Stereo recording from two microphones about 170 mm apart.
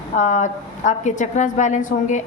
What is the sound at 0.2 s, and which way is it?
A woman's voice, 45° left (ahead or behind).